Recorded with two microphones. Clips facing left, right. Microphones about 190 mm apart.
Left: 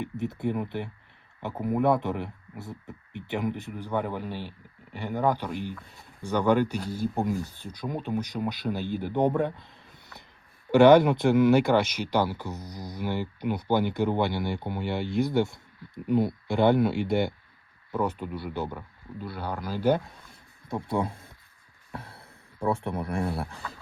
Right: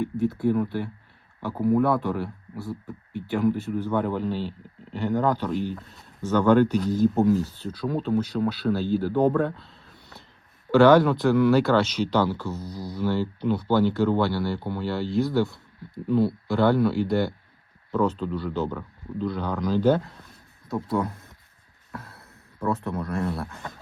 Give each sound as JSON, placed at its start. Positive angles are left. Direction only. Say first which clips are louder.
{"t": 0.0, "sound": "speech", "louder": "right 6 dB", "side_deg": 20}
{"t": 20.7, "sound": "speech", "louder": "right 2 dB", "side_deg": 25}